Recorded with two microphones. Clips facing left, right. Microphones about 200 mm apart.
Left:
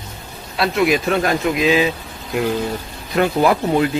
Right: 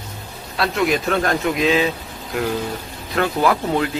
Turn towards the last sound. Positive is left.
turn(degrees=15)  # may be behind; listen again after turning